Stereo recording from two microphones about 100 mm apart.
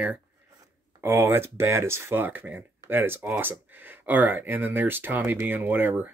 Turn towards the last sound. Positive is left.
turn(degrees=-20)  # may be behind; listen again after turning